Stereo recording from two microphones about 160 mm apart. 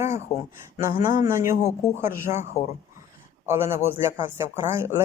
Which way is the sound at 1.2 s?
15° right (ahead or behind).